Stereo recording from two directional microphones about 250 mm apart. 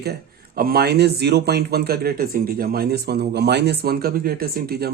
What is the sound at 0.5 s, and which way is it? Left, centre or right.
Speech, right.